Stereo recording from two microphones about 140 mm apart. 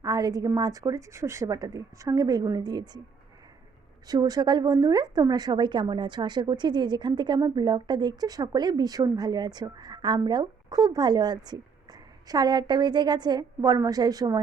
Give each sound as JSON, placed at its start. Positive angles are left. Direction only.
{"t": 0.0, "sound": "a woman's voice", "side_deg": -25}
{"t": 4.0, "sound": "a woman's voice", "side_deg": -30}